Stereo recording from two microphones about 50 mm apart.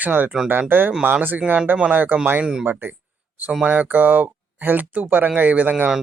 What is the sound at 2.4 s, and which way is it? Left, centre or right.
Speech, centre.